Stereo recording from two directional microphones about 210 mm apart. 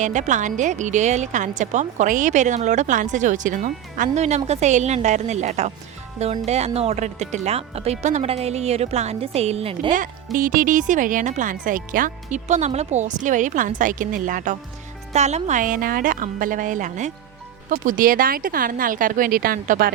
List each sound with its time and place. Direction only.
0.0 s a woman's voice: 35° right (ahead or behind)